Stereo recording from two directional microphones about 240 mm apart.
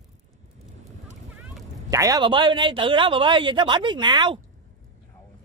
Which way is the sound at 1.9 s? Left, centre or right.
Centre.